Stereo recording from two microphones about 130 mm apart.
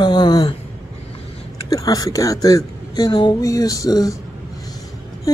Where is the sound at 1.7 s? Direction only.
30° left (ahead or behind).